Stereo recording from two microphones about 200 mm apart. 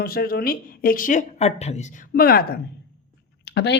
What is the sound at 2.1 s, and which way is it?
Speech, 50° left (ahead or behind).